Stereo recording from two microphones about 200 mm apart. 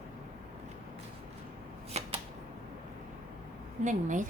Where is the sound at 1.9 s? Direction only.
35° right (ahead or behind).